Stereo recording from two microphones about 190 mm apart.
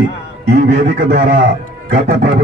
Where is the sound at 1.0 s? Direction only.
55° right (ahead or behind).